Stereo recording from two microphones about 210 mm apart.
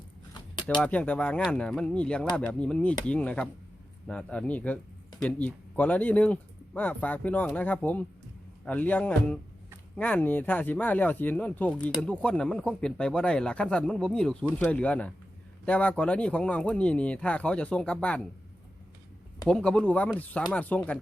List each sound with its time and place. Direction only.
0.8 s speech: 5° left (ahead or behind)
19.5 s speech: 5° left (ahead or behind)